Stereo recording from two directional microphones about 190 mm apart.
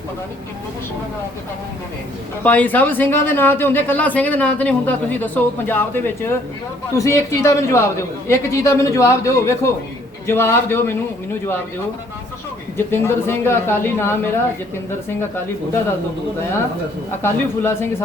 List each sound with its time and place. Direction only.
2.4 s speech: 10° left (ahead or behind)
12.7 s speech: 10° left (ahead or behind)
17.2 s speech: 10° left (ahead or behind)